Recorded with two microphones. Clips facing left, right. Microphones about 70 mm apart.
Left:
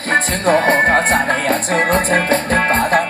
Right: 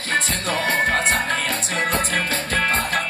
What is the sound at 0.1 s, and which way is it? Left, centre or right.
Music, left.